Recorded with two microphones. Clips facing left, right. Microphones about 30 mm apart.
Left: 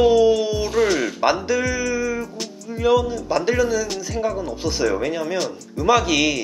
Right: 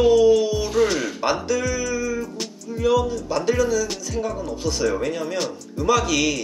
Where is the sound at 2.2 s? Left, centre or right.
Centre.